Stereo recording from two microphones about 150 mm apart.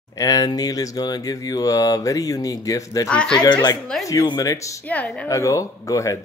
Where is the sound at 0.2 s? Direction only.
25° left (ahead or behind).